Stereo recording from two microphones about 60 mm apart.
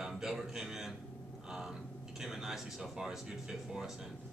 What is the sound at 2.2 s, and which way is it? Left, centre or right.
Speech, centre.